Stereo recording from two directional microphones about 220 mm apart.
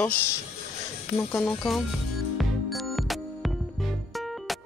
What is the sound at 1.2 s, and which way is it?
Speech, 10° left (ahead or behind).